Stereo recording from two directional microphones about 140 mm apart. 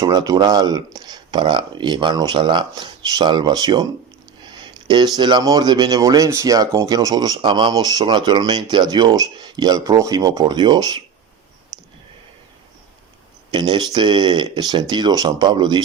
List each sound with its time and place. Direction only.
0.0 s speech: 25° right (ahead or behind)
13.5 s speech: 30° right (ahead or behind)